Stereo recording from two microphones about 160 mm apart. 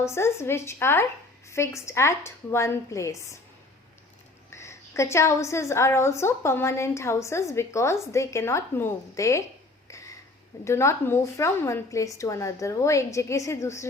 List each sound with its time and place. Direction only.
0.0 s a woman's voice: 15° left (ahead or behind)
4.5 s a woman's voice: 15° left (ahead or behind)
9.9 s a sound: 20° left (ahead or behind)
10.6 s a woman's voice: 15° left (ahead or behind)